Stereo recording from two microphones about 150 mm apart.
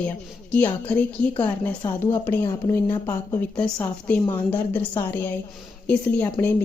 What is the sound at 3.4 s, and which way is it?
A woman's voice, 5° left (ahead or behind).